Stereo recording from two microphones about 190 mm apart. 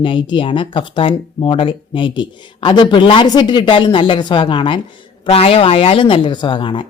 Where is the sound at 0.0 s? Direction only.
25° left (ahead or behind).